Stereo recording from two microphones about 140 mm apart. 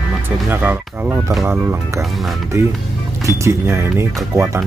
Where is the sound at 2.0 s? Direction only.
Centre (ahead or behind).